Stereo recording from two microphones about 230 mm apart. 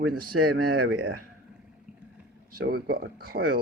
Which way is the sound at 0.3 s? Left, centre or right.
Right.